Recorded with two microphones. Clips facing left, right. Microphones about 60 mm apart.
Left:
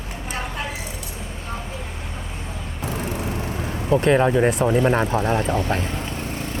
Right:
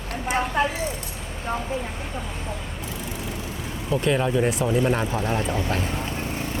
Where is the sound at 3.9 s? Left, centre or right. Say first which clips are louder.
Left 5 dB; left.